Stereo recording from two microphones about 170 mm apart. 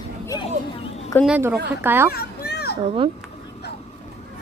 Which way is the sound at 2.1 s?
65° left (ahead or behind).